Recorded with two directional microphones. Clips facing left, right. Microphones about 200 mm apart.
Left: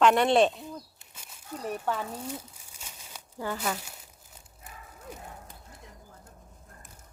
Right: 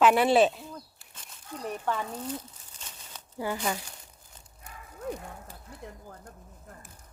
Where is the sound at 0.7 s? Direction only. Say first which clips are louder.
Left 2 dB; 10° left (ahead or behind).